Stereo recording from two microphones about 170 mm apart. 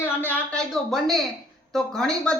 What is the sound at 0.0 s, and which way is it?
A woman's voice, 10° left (ahead or behind).